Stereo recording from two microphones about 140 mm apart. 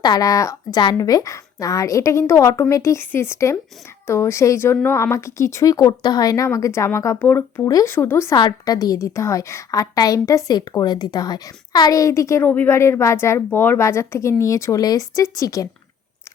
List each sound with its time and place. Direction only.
0.0 s a woman's voice: 25° left (ahead or behind)
8.4 s a woman's voice: 30° left (ahead or behind)